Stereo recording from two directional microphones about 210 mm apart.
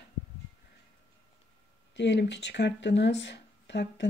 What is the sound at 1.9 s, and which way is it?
Speech, 55° left (ahead or behind).